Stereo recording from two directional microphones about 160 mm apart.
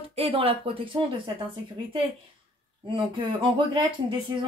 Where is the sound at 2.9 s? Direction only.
30° right (ahead or behind).